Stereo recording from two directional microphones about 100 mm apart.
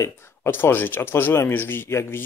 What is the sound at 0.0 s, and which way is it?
Speech, 25° left (ahead or behind).